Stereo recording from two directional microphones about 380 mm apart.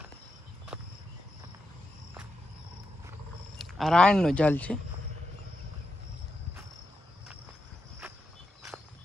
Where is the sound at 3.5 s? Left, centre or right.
Centre.